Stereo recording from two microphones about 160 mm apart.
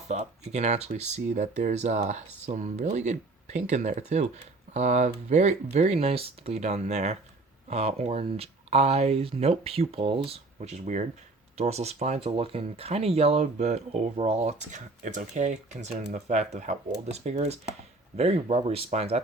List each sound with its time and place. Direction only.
0.1 s speech: 45° right (ahead or behind)